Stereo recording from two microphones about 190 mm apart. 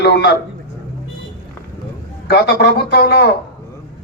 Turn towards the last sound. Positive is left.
turn(degrees=60)  # may be behind; listen again after turning